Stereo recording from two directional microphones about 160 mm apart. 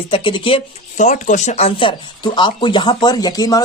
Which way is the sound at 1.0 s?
50° left (ahead or behind).